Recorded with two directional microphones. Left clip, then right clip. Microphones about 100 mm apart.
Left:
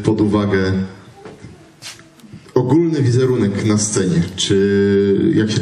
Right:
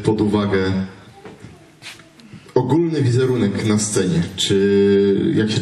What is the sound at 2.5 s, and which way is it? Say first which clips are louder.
A man's voice: left 2 dB; 25° left (ahead or behind).